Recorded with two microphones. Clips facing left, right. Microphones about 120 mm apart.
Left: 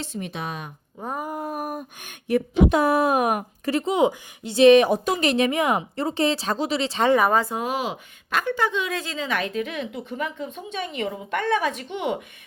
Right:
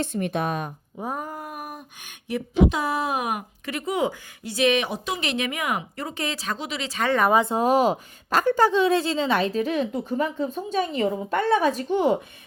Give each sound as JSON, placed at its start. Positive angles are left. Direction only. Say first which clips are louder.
{"t": 0.0, "sound": "a woman's voice", "louder": "right 6 dB", "side_deg": -55}
{"t": 0.9, "sound": "speech", "louder": "even", "side_deg": -5}
{"t": 1.4, "sound": "a sound", "louder": "left 6 dB", "side_deg": 35}
{"t": 3.7, "sound": "speech", "louder": "left 5 dB", "side_deg": 30}
{"t": 7.4, "sound": "a woman's voice", "louder": "right 7 dB", "side_deg": -35}